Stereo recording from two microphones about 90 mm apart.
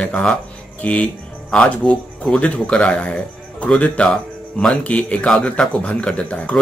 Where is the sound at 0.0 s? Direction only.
10° left (ahead or behind).